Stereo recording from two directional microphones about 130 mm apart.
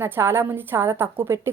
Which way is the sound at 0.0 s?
20° right (ahead or behind).